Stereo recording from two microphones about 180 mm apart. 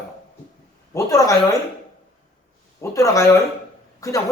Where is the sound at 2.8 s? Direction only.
15° left (ahead or behind).